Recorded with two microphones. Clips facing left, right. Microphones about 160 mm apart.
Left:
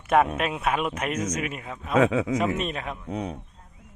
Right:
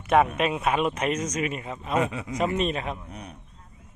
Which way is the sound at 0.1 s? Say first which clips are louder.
Right 1 dB; centre (ahead or behind).